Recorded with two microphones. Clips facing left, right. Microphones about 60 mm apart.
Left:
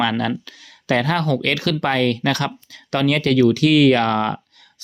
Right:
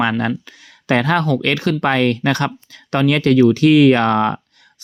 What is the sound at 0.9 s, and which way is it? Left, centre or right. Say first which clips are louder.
Speech: right 3 dB; right.